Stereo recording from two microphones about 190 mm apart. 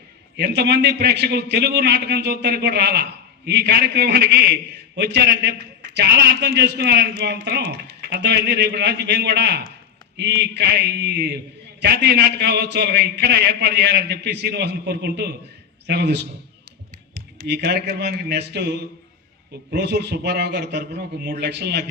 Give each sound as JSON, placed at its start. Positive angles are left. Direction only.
{"t": 0.3, "sound": "a man's voice", "side_deg": -60}
{"t": 17.4, "sound": "a man's voice", "side_deg": -60}